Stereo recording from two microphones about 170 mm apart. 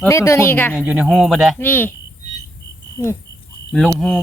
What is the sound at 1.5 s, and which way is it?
Speech, 10° left (ahead or behind).